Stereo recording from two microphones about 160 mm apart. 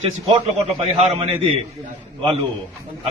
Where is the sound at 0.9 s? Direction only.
40° right (ahead or behind).